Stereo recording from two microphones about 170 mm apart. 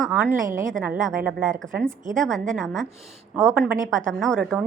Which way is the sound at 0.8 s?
5° right (ahead or behind).